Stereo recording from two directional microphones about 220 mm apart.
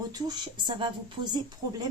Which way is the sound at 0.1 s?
20° right (ahead or behind).